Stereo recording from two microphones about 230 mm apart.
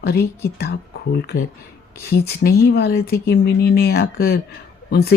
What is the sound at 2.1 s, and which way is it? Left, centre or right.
Speech, left.